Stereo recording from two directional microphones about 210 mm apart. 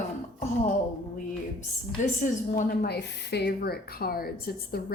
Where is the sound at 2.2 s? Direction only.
45° left (ahead or behind).